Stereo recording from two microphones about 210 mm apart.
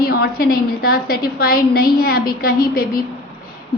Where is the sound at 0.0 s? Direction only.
45° left (ahead or behind).